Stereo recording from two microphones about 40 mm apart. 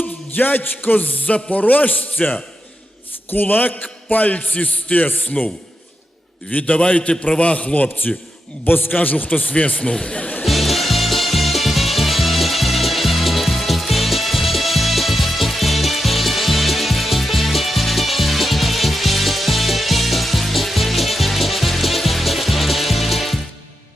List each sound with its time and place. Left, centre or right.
0.0 s music: left
1.3 s a man's voice: left
3.2 s a man's voice: left
6.6 s a man's voice: left
8.6 s a man's voice: left
9.7 s a man's voice: left
10.4 s music: centre